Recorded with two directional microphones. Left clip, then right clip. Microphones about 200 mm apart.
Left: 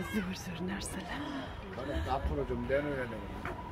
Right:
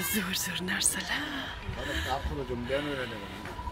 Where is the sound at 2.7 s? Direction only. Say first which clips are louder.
Right 1 dB; 45° right (ahead or behind).